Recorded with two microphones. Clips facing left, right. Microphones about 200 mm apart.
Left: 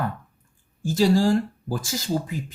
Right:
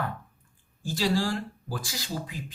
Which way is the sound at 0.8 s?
45° left (ahead or behind).